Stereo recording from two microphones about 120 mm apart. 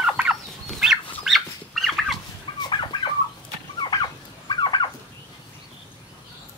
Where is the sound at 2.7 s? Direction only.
40° left (ahead or behind).